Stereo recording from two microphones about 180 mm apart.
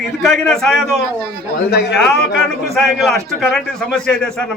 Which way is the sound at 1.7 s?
65° left (ahead or behind).